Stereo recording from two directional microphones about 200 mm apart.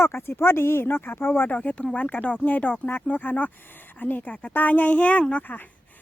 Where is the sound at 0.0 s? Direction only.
10° left (ahead or behind).